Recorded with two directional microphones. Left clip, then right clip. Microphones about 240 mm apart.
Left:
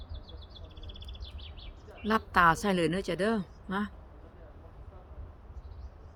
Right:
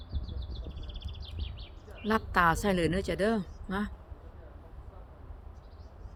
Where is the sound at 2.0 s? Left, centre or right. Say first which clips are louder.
Left 2 dB; centre.